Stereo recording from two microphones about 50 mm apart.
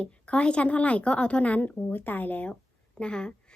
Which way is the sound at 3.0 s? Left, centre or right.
Centre.